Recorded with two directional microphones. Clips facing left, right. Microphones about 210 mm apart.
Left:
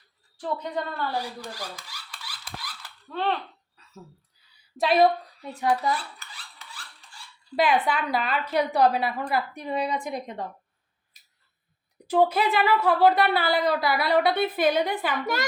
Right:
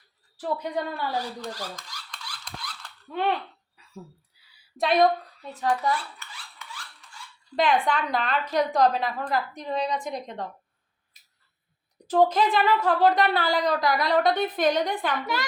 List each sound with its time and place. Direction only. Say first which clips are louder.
0.3 s a woman's voice: right 1 dB; 10° right (ahead or behind)
1.1 s rub: right 1 dB; 10° left (ahead or behind)
3.1 s a woman's voice: right 1 dB; 15° right (ahead or behind)
3.8 s a sound: right 4 dB; 10° right (ahead or behind)
4.8 s speech: left 1 dB; 5° left (ahead or behind)
6.1 s filing: right 2 dB; 35° left (ahead or behind)
7.5 s speech: even; 5° left (ahead or behind)
12.0 s speech: right 1 dB; 10° left (ahead or behind)